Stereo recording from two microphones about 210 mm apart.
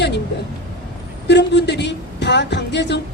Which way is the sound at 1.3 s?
55° left (ahead or behind).